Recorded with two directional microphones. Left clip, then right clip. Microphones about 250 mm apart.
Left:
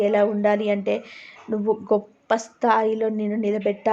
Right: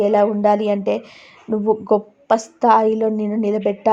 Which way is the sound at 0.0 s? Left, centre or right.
Right.